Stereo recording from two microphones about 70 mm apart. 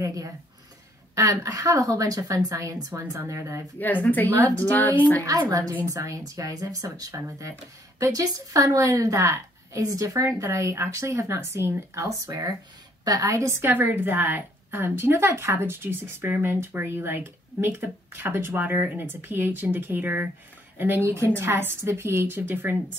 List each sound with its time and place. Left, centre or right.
0.0 s a woman's voice: right
3.8 s a woman's voice: left
5.2 s a woman's voice: right
7.2 s a woman's voice: right
13.7 s a woman's voice: right